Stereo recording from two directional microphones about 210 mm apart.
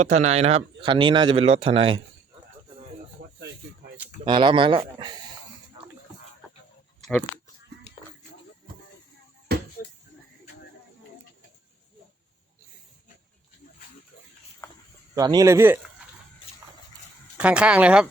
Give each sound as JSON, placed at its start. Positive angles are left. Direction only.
{"t": 0.0, "sound": "a man's voice", "side_deg": -35}
{"t": 4.3, "sound": "a man's voice", "side_deg": -25}
{"t": 7.0, "sound": "a sound", "side_deg": 5}
{"t": 9.5, "sound": "bouncing", "side_deg": -50}
{"t": 14.6, "sound": "a sound", "side_deg": 15}
{"t": 15.1, "sound": "speech", "side_deg": -15}
{"t": 17.3, "sound": "speech", "side_deg": -5}